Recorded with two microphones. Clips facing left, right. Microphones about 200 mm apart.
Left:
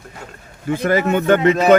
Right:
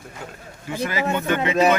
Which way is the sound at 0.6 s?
50° left (ahead or behind).